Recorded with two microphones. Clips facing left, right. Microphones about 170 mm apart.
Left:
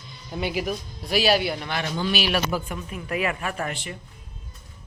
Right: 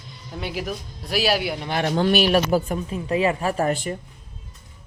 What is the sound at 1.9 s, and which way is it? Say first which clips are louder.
Speech: right 7 dB; 55° right (ahead or behind).